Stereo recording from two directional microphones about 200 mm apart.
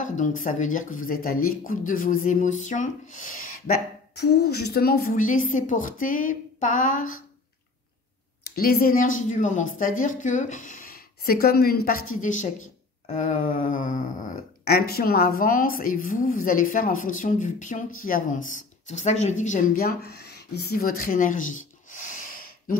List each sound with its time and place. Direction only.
0.0 s speech: 40° left (ahead or behind)
8.5 s speech: 50° left (ahead or behind)
21.9 s gasp: 40° left (ahead or behind)